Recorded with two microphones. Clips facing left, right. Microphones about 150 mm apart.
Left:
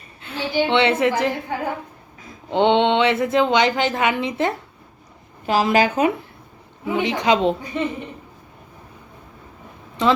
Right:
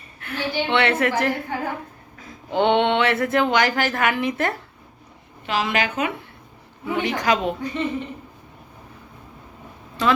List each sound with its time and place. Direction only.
0.2 s a woman's voice: 20° left (ahead or behind)
5.5 s a woman's voice: 40° left (ahead or behind)
6.8 s a woman's voice: 20° left (ahead or behind)